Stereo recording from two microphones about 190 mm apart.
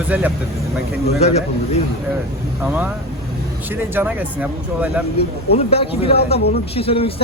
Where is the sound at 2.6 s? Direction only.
10° right (ahead or behind).